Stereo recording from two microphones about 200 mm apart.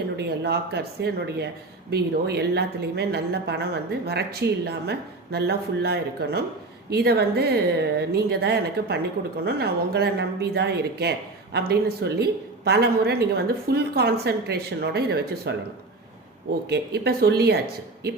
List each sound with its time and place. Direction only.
0.2 s a woman's voice: 55° right (ahead or behind)
16.6 s a woman's voice: 55° right (ahead or behind)